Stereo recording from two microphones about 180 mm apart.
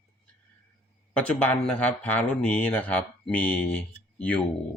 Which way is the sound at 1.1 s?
10° left (ahead or behind).